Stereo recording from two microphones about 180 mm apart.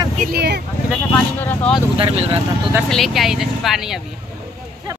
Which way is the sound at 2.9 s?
Centre (ahead or behind).